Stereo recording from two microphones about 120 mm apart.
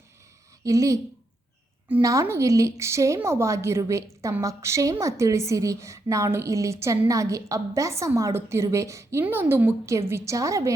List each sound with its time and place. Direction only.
0.6 s a woman's voice: 30° right (ahead or behind)
2.0 s a woman's voice: 25° right (ahead or behind)